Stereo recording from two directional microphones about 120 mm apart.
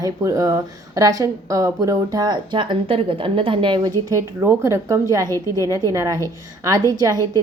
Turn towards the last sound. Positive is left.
turn(degrees=-30)  # may be behind; listen again after turning